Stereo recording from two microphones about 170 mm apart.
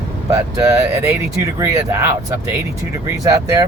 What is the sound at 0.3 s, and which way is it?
Speech, 20° right (ahead or behind).